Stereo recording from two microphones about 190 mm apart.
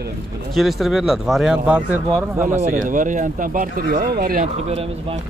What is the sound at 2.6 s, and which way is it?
Speech, 45° right (ahead or behind).